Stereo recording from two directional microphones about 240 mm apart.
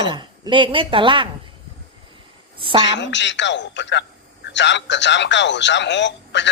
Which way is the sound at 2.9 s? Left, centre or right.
Left.